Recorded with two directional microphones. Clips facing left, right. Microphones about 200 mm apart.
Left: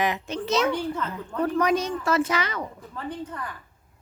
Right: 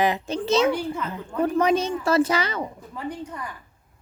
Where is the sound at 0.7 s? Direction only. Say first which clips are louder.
Right 2 dB; 10° right (ahead or behind).